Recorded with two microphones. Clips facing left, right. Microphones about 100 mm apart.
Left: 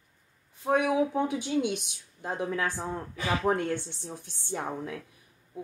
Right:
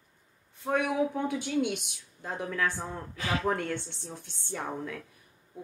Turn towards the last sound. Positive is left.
turn(degrees=20)  # may be behind; listen again after turning